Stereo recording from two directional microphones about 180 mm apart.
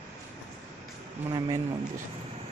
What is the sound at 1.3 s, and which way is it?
Speech, 20° right (ahead or behind).